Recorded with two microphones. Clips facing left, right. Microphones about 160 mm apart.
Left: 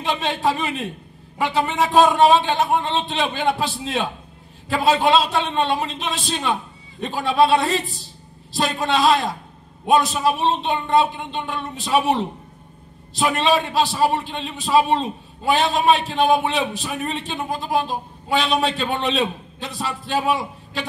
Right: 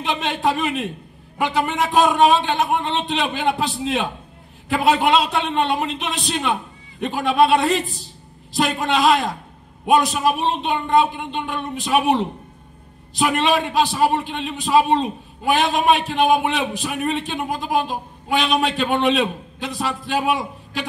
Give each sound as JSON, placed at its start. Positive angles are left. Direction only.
{"t": 0.2, "sound": "a man's voice", "side_deg": -20}
{"t": 8.7, "sound": "a man's voice", "side_deg": -15}
{"t": 13.3, "sound": "a man's voice", "side_deg": -15}